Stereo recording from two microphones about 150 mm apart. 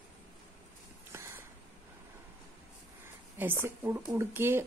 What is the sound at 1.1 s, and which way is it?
Spray, 15° right (ahead or behind).